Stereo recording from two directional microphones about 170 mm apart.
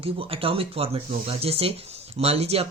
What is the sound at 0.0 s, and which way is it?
Speech, 35° right (ahead or behind).